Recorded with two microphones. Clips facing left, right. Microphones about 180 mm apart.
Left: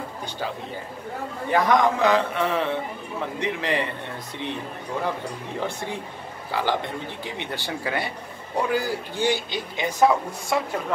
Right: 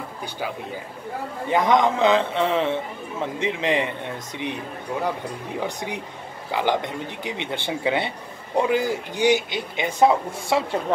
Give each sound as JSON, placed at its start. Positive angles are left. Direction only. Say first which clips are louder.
{"t": 1.5, "sound": "a man's voice", "louder": "right 1 dB", "side_deg": -20}
{"t": 5.6, "sound": "a man's voice", "louder": "even", "side_deg": -15}